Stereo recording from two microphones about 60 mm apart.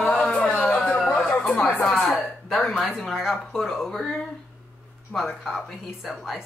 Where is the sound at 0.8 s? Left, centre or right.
Centre.